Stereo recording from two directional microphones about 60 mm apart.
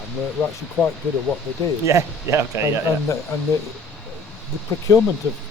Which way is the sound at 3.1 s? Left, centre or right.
Left.